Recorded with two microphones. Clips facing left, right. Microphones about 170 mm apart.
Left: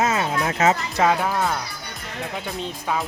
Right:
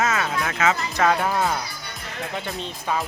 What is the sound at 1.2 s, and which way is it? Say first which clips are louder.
Speech: even; centre (ahead or behind).